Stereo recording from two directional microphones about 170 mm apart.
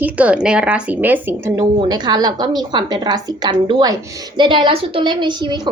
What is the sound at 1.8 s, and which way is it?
A woman's voice, 25° right (ahead or behind).